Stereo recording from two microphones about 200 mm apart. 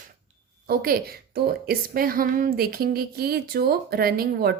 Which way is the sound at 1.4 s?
50° right (ahead or behind).